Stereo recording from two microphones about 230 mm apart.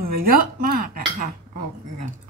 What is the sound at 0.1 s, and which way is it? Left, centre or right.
Dishes, right.